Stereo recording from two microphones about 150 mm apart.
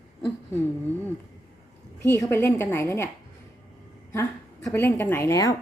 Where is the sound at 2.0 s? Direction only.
15° left (ahead or behind).